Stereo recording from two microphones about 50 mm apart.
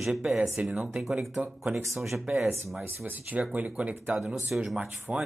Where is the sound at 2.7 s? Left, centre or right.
Right.